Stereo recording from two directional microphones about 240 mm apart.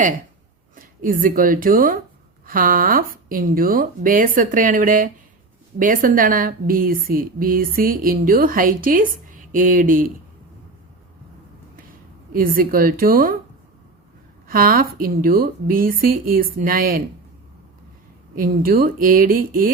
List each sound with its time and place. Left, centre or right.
0.8 s a woman's voice: right
11.8 s speech: right
14.4 s a woman's voice: right
18.3 s a woman's voice: right